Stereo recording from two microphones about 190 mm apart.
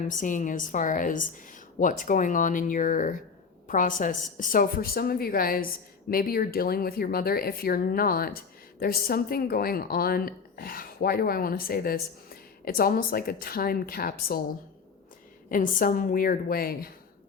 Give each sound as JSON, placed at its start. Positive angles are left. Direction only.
{"t": 0.1, "sound": "speech", "side_deg": 45}
{"t": 15.4, "sound": "speech", "side_deg": 45}